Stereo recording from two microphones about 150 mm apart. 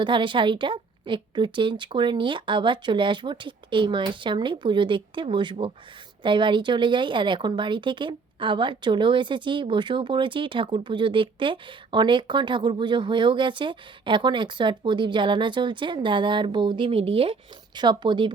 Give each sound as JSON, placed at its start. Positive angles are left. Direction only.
{"t": 0.0, "sound": "speech", "side_deg": -35}